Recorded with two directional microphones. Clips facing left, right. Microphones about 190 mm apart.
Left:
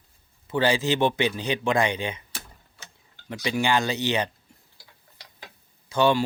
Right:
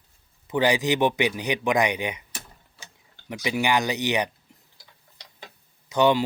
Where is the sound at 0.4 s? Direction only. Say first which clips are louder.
Right 1 dB; 15° right (ahead or behind).